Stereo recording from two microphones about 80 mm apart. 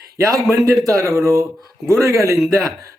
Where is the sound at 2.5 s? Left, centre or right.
Right.